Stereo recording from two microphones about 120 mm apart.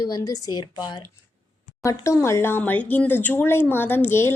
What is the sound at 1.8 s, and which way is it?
Speech, 25° left (ahead or behind).